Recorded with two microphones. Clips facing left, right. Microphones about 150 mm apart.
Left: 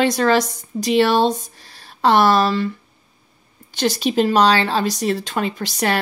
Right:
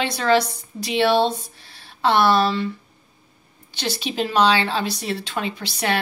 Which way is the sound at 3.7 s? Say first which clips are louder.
Left 7 dB; 45° left (ahead or behind).